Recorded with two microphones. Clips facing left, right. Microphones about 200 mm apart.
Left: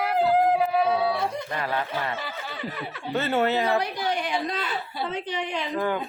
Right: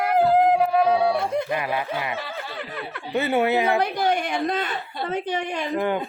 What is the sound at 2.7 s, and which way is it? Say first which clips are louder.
Speech: right 2 dB; 55° right (ahead or behind).